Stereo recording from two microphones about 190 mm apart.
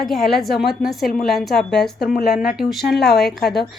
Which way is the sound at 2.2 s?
50° left (ahead or behind).